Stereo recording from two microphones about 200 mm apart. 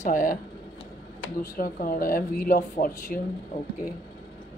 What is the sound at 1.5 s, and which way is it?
Speech, 45° left (ahead or behind).